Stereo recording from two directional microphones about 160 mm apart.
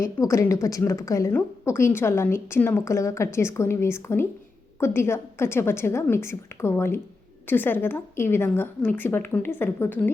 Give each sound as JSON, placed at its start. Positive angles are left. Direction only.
{"t": 0.0, "sound": "a woman's voice", "side_deg": 20}